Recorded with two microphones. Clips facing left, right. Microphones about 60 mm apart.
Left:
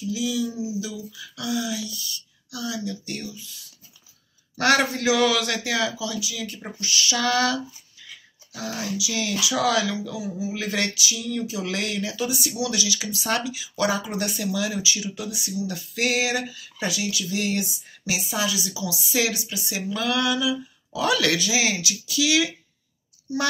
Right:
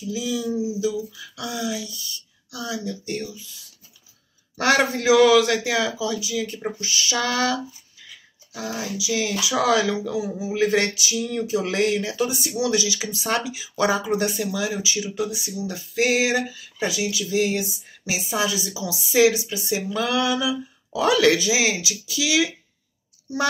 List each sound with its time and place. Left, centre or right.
0.1 s speech: right
4.6 s speech: centre
10.5 s a sound: right
12.5 s speech: right